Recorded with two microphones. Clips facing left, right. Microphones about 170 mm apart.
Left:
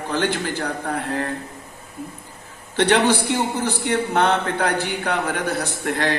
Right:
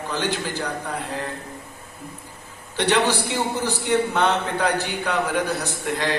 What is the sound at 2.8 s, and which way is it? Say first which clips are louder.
A man's voice: left 3 dB; 50° left (ahead or behind).